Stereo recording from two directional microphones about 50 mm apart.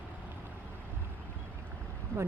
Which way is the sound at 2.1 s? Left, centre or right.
Left.